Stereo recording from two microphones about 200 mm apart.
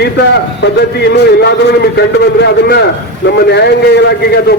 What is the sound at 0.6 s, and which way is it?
A man's voice, 55° left (ahead or behind).